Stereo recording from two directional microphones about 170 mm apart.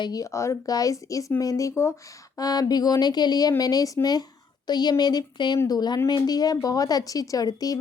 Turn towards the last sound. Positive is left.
turn(degrees=20)  # may be behind; listen again after turning